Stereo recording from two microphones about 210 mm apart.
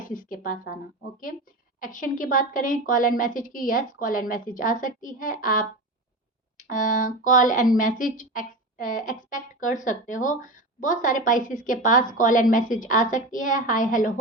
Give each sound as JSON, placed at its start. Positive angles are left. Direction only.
{"t": 0.0, "sound": "speech", "side_deg": 40}
{"t": 1.8, "sound": "speech", "side_deg": 40}